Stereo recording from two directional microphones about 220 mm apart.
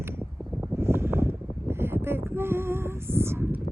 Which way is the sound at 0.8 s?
10° right (ahead or behind).